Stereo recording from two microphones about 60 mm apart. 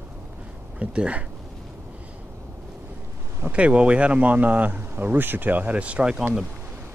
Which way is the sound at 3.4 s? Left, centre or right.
Right.